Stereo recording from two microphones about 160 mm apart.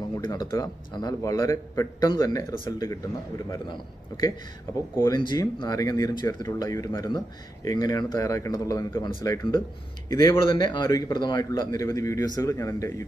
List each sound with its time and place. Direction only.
0.2 s speech: 25° left (ahead or behind)
5.1 s speech: 25° left (ahead or behind)